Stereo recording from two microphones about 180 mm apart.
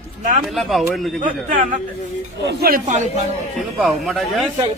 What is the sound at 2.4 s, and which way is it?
Speech, 65° right (ahead or behind).